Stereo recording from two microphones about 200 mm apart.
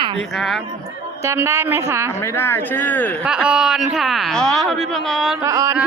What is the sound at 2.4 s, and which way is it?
Speech, 10° left (ahead or behind).